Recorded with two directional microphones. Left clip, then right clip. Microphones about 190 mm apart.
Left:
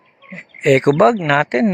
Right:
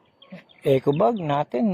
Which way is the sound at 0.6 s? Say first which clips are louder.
Left 7 dB; 10° left (ahead or behind).